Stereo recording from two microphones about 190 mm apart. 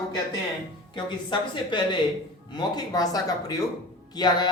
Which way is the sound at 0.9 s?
25° left (ahead or behind).